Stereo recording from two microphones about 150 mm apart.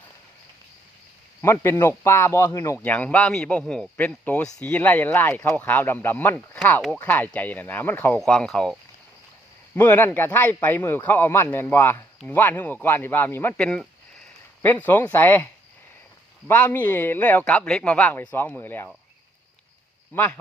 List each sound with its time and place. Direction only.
1.4 s speech: 15° left (ahead or behind)
2.7 s speech: 10° left (ahead or behind)
9.7 s speech: 15° left (ahead or behind)
16.5 s speech: 10° left (ahead or behind)
20.1 s speech: 15° left (ahead or behind)